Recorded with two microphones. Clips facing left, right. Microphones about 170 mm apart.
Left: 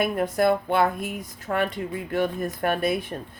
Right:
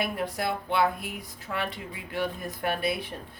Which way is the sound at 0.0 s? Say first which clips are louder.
Left 8 dB; 50° left (ahead or behind).